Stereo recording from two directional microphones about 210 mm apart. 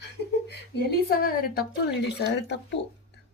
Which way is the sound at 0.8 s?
50° left (ahead or behind).